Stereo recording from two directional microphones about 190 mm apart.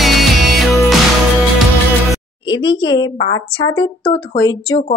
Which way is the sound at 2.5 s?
25° left (ahead or behind).